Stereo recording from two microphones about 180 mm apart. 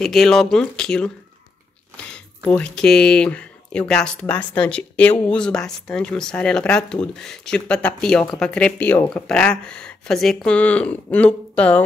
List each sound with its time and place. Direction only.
0.0 s speech: centre (ahead or behind)
2.1 s speech: 5° left (ahead or behind)